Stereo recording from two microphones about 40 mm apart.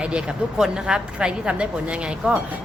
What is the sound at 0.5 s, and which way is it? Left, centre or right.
A woman's voice, centre.